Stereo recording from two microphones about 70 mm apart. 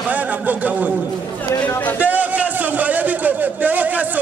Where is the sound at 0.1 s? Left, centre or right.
Right.